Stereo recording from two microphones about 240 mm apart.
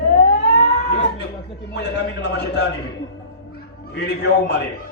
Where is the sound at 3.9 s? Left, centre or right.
Left.